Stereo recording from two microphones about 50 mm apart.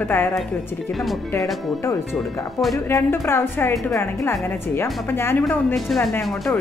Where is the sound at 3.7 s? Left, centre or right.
Left.